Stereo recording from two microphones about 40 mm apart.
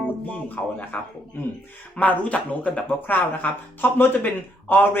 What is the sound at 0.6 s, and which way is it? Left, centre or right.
Speech, left.